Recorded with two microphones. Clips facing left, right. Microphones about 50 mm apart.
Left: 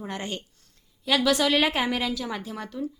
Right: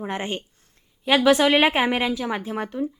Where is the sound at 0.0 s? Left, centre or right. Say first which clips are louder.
Right 5 dB; right.